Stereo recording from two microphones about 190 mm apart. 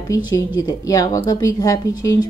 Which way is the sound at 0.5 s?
20° left (ahead or behind).